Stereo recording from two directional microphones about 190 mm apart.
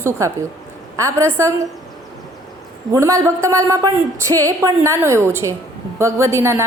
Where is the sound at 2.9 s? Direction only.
15° right (ahead or behind).